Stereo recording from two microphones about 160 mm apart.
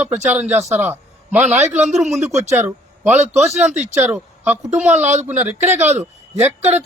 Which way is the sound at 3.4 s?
Centre (ahead or behind).